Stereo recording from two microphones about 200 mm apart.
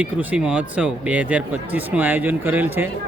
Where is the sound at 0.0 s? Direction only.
10° right (ahead or behind).